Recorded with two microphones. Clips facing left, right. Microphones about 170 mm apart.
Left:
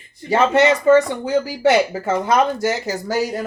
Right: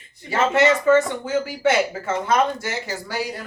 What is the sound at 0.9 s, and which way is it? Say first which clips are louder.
Speech: left 3 dB; 35° left (ahead or behind).